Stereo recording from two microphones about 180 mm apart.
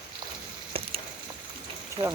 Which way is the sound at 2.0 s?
30° right (ahead or behind).